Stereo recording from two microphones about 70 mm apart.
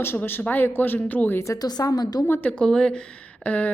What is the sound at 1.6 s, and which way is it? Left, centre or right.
Speech, left.